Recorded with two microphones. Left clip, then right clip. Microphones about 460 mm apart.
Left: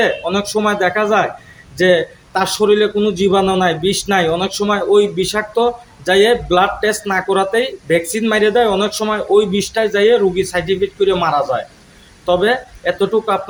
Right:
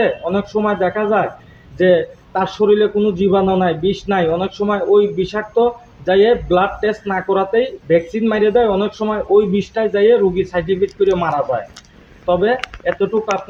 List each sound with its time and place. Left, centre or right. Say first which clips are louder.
0.0 s speech: left 1 dB; right